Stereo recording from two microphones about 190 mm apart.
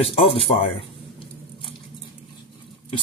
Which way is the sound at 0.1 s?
30° left (ahead or behind).